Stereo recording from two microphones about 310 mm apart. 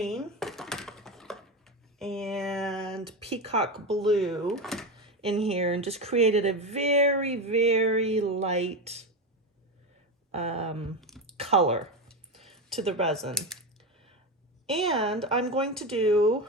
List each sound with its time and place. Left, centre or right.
0.0 s a sound: centre
3.2 s speech: centre
4.0 s speech: centre
5.4 s speech: centre
10.3 s speech: centre
11.3 s a sound: centre
11.8 s a sound: centre
12.9 s speech: centre
14.7 s speech: centre
16.2 s speech: centre